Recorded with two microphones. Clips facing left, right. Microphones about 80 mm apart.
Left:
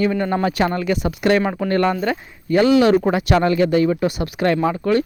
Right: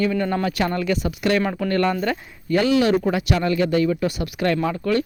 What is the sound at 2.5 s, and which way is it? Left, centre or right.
Speech, left.